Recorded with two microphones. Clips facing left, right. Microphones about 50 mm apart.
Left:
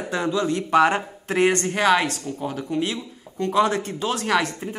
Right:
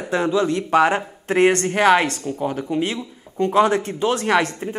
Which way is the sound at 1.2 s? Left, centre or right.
Right.